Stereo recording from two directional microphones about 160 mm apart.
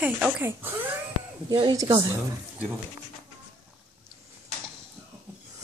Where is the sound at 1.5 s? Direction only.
25° right (ahead or behind).